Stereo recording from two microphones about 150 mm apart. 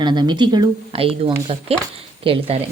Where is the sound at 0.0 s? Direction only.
30° right (ahead or behind).